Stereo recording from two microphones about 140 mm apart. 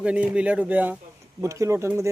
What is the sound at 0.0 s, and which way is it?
Speech, 10° right (ahead or behind).